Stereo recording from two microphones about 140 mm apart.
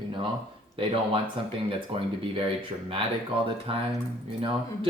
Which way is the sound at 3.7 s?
40° right (ahead or behind).